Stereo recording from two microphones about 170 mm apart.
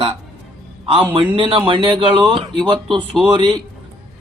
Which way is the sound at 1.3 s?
30° right (ahead or behind).